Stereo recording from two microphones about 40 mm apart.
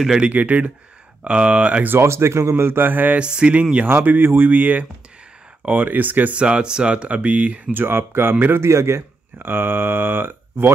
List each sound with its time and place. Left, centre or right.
0.3 s speech: right
1.2 s speech: right
1.9 s speech: right
3.2 s speech: right
4.0 s speech: right
6.3 s speech: right
7.7 s a man's voice: right